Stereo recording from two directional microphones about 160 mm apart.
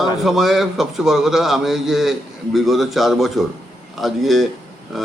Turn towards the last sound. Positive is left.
turn(degrees=0)  # may be behind; listen again after turning